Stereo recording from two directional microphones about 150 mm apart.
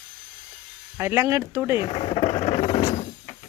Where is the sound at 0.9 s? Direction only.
15° right (ahead or behind).